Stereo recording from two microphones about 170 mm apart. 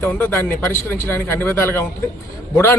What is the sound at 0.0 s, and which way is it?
A man's voice, 10° left (ahead or behind).